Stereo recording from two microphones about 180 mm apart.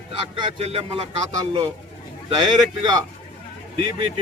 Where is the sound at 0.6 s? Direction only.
35° right (ahead or behind).